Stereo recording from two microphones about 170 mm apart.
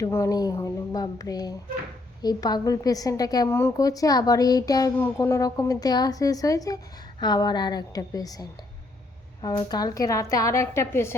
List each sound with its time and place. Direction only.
0.0 s a woman's voice: 20° left (ahead or behind)